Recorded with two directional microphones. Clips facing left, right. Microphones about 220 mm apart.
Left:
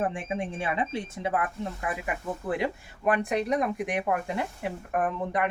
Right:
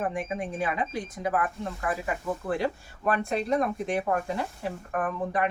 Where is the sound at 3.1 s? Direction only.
15° left (ahead or behind).